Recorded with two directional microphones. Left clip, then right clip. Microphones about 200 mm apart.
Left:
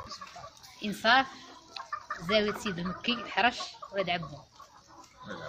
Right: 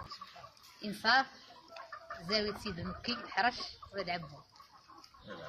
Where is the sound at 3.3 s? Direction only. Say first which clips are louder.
Left 4 dB; 20° left (ahead or behind).